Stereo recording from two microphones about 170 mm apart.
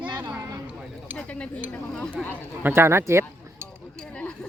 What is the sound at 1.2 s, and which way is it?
Speech, 5° left (ahead or behind).